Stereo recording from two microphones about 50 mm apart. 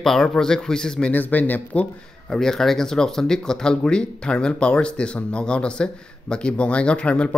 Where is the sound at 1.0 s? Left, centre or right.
Left.